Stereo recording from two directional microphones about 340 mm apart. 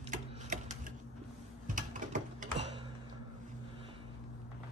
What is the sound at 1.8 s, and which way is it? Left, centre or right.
Typing, right.